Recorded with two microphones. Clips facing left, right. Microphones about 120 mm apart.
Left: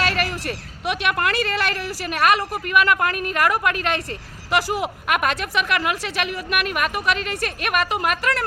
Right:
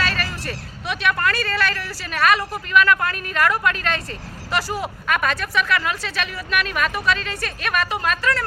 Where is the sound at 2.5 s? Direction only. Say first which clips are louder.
Right 1 dB; 15° left (ahead or behind).